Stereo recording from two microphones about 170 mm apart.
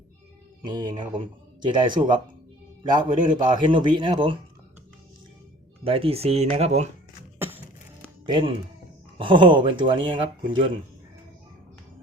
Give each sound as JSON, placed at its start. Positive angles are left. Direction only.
{"t": 0.6, "sound": "speech", "side_deg": -25}
{"t": 5.8, "sound": "speech", "side_deg": -35}
{"t": 7.3, "sound": "beatboxing", "side_deg": -10}
{"t": 9.1, "sound": "speech", "side_deg": -30}